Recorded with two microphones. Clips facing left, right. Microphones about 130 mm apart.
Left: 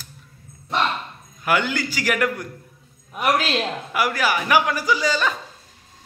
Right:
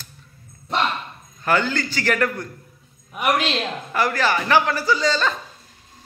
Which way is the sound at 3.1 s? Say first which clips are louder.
Even; centre (ahead or behind).